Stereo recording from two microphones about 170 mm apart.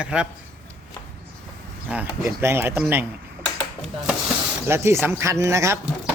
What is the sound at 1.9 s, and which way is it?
A man's voice, 10° right (ahead or behind).